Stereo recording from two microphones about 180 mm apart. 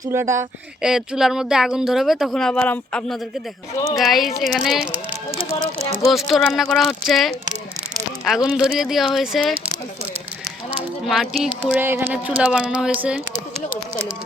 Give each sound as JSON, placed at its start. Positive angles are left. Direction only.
{"t": 0.0, "sound": "a sound", "side_deg": -15}
{"t": 0.8, "sound": "speech", "side_deg": -5}
{"t": 6.1, "sound": "speech", "side_deg": 0}
{"t": 8.4, "sound": "speech", "side_deg": -5}
{"t": 10.7, "sound": "a sound", "side_deg": -5}
{"t": 12.4, "sound": "speech", "side_deg": -5}